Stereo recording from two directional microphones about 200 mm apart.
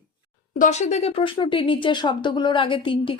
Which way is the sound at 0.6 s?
35° left (ahead or behind).